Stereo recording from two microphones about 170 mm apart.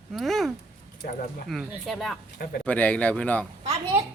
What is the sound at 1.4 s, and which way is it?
Speech, centre (ahead or behind).